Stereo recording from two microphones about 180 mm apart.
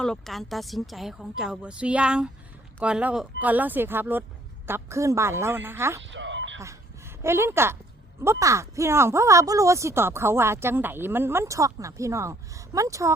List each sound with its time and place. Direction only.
0.0 s speech: 5° left (ahead or behind); by 6.0 s 15° right (ahead or behind)
6.0 s a sound: 90° right
6.6 s speech: 15° right (ahead or behind)